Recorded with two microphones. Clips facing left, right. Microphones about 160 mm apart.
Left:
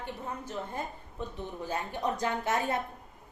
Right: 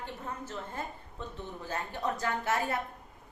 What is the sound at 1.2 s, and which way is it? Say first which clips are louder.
A woman's voice: left 4 dB; 15° left (ahead or behind).